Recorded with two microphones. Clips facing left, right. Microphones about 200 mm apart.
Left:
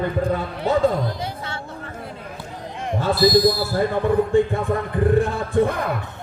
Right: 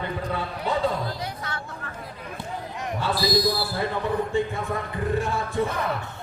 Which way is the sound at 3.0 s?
45° left (ahead or behind).